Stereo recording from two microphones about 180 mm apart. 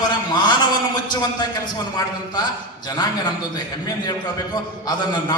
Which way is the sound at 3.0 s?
25° left (ahead or behind).